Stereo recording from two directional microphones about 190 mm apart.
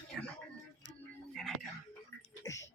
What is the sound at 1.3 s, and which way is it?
Music, centre (ahead or behind).